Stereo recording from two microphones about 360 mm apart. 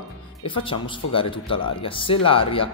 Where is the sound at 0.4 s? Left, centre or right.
Centre.